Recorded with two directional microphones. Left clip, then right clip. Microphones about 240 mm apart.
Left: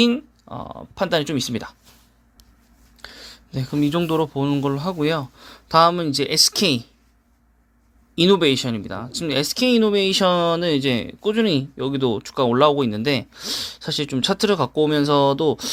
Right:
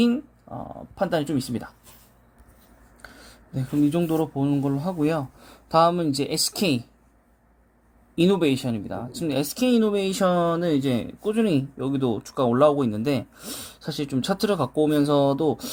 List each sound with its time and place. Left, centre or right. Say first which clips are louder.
0.0 s speech: left 4 dB; centre
3.0 s speech: left 7 dB; centre
8.1 s speech: left 5 dB; centre
14.2 s speech: left 4 dB; left
14.4 s speech: left 3 dB; centre